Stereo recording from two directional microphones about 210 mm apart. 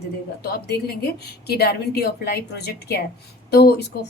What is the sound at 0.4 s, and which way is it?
Speech, 50° left (ahead or behind).